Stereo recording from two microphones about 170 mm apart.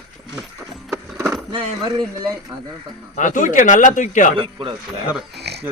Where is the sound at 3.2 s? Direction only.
50° left (ahead or behind).